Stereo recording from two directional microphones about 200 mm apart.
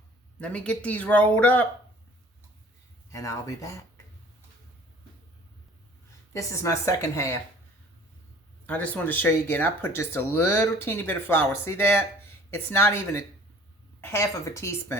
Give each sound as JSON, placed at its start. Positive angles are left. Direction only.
{"t": 0.3, "sound": "speech", "side_deg": 5}
{"t": 3.1, "sound": "speech", "side_deg": 15}
{"t": 6.3, "sound": "speech", "side_deg": 15}
{"t": 8.6, "sound": "speech", "side_deg": 5}